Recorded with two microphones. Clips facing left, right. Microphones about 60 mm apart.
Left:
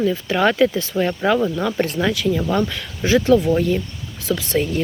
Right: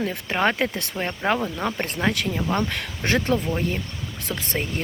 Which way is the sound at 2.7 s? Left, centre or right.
Right.